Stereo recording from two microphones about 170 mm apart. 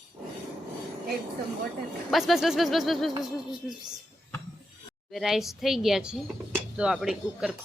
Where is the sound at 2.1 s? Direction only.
Centre (ahead or behind).